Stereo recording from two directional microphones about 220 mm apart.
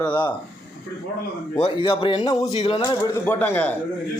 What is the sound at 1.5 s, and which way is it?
A man's voice, 25° left (ahead or behind).